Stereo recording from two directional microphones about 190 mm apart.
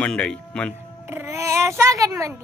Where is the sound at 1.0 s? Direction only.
15° right (ahead or behind).